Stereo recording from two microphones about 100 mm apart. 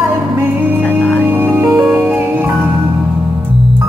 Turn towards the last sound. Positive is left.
turn(degrees=-15)  # may be behind; listen again after turning